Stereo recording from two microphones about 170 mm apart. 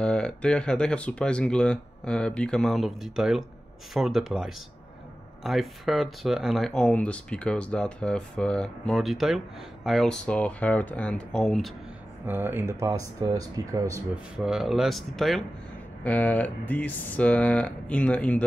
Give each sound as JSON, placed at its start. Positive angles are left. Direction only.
{"t": 0.0, "sound": "speech", "side_deg": 5}
{"t": 12.3, "sound": "speech", "side_deg": -10}
{"t": 14.4, "sound": "speech", "side_deg": 0}